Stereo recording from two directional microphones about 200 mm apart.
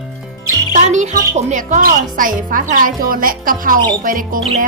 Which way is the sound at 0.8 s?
35° right (ahead or behind).